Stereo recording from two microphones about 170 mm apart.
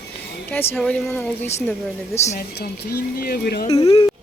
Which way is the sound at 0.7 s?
5° left (ahead or behind).